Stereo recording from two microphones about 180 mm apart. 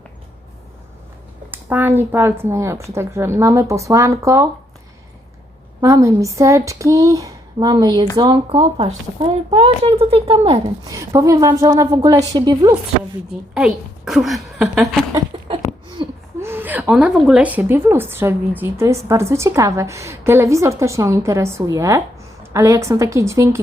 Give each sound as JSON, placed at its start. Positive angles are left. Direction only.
{"t": 1.5, "sound": "a woman's voice", "side_deg": -10}
{"t": 5.8, "sound": "a woman's voice", "side_deg": -15}
{"t": 10.9, "sound": "a woman's voice", "side_deg": -20}
{"t": 13.5, "sound": "a woman's voice", "side_deg": -5}
{"t": 15.3, "sound": "a sound", "side_deg": -30}
{"t": 16.4, "sound": "a woman's voice", "side_deg": -10}